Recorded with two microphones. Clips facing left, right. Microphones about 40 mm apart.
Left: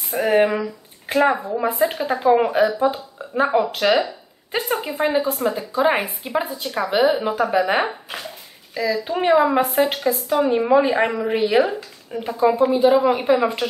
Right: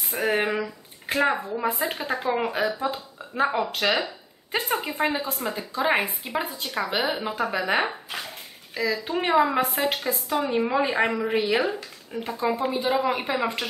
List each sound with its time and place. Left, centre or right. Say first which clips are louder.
0.1 s speech: left 7 dB; centre
4.0 s a sound: left 5 dB; centre
4.8 s speech: left 6 dB; centre